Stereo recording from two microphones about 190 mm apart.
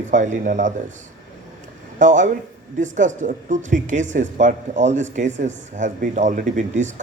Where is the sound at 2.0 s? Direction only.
40° right (ahead or behind).